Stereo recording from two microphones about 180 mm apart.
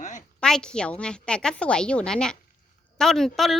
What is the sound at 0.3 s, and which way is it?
A child's voice, 5° left (ahead or behind).